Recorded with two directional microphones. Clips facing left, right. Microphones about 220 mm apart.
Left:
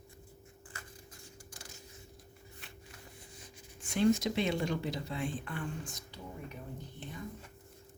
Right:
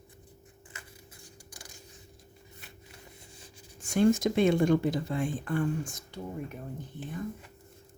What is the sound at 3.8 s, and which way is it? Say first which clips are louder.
Speech: right 4 dB; 45° right (ahead or behind).